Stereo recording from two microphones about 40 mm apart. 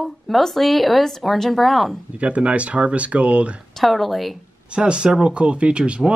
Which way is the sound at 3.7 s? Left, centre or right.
Centre.